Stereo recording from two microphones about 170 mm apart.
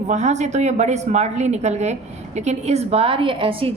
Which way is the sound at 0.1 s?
45° right (ahead or behind).